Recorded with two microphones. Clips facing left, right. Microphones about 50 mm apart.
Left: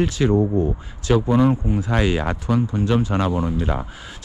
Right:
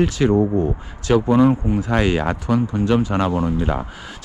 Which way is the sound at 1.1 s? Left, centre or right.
Right.